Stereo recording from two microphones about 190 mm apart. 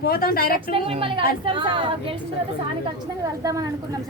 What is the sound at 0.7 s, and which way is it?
A woman's voice, 30° right (ahead or behind).